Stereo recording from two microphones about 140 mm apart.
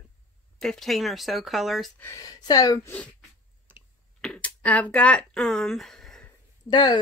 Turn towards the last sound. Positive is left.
turn(degrees=35)  # may be behind; listen again after turning